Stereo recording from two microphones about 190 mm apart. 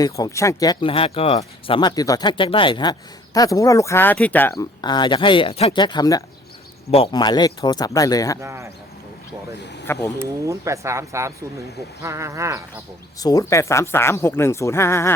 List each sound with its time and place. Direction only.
0.0 s speech: 15° left (ahead or behind)
4.5 s speech: 20° left (ahead or behind)
8.4 s speech: 15° right (ahead or behind)
9.8 s speech: 10° left (ahead or behind)
10.2 s speech: 15° right (ahead or behind)
13.1 s speech: 20° left (ahead or behind)